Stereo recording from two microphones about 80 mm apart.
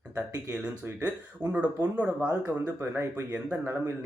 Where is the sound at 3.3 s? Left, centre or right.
Centre.